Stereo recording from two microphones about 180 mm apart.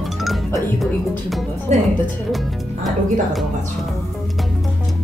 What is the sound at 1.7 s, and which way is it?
Music, 40° right (ahead or behind).